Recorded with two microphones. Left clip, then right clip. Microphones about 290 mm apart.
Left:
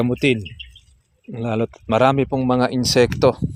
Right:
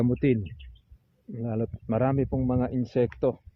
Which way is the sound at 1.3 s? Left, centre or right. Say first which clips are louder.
Left 9 dB; left.